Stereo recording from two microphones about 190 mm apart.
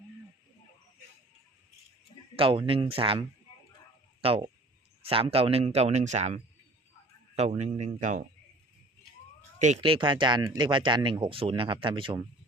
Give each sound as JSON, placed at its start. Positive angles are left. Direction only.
{"t": 2.3, "sound": "speech", "side_deg": -25}
{"t": 9.6, "sound": "speech", "side_deg": -40}